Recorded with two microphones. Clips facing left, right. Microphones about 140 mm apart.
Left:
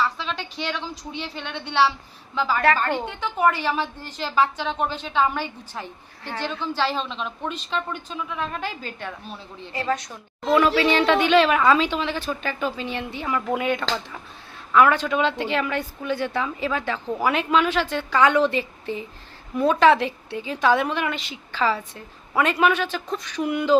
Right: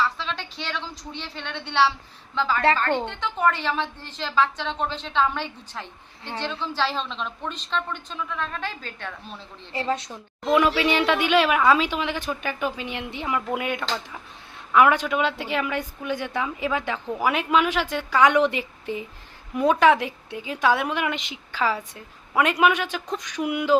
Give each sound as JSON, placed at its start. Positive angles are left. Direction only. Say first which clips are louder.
{"t": 0.0, "sound": "a woman's voice", "louder": "left 1 dB", "side_deg": 0}
{"t": 9.7, "sound": "a woman's voice", "louder": "left 1 dB", "side_deg": -25}
{"t": 10.5, "sound": "a woman's voice", "louder": "left 2 dB", "side_deg": -15}